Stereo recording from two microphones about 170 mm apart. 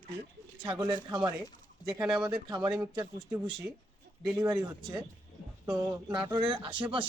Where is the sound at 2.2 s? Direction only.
25° right (ahead or behind).